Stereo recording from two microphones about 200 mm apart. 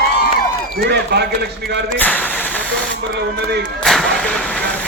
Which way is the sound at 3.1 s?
55° right (ahead or behind).